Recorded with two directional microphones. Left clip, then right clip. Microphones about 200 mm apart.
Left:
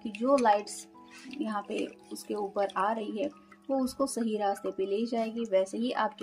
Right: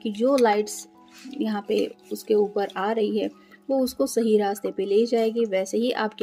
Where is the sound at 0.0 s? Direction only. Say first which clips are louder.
Right 5 dB; 45° right (ahead or behind).